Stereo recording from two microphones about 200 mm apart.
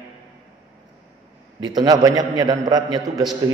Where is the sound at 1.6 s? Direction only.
20° right (ahead or behind).